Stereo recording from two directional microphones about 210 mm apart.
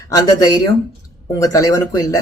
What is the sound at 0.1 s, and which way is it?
Speech, 15° left (ahead or behind).